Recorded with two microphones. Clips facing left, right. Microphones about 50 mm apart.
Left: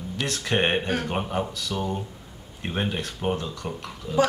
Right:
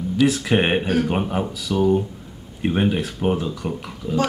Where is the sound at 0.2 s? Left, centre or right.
Centre.